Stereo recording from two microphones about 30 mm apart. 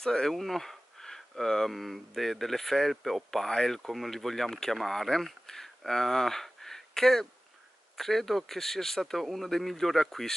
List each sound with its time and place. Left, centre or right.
0.0 s speech: centre
0.3 s speech: centre
3.4 s speech: centre